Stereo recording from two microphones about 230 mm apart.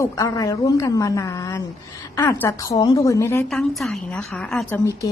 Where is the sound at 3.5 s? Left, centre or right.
Centre.